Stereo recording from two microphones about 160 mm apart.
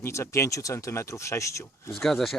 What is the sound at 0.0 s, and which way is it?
Speech, 15° left (ahead or behind).